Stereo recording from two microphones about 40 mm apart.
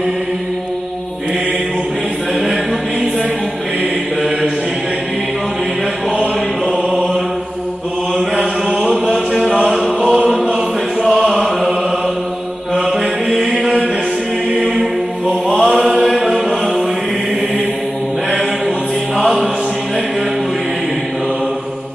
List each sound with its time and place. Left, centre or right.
8.4 s chant: right
10.1 s choir: right
13.4 s chant: right
14.5 s mantra: right
15.5 s chant: right
16.1 s chant: right
19.1 s choir: right